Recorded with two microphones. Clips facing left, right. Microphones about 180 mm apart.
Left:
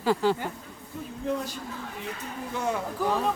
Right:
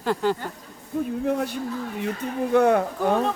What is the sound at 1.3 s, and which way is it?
A man's voice, 60° right (ahead or behind).